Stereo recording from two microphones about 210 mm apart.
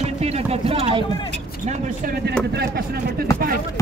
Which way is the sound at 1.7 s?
40° right (ahead or behind).